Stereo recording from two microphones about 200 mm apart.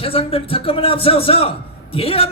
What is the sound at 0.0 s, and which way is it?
Speech, 30° left (ahead or behind).